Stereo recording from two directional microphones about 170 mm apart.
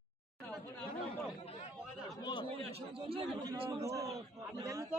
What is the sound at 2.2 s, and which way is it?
Chatter, 25° left (ahead or behind).